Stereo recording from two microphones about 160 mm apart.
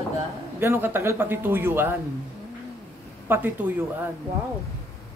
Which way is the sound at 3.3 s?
10° right (ahead or behind).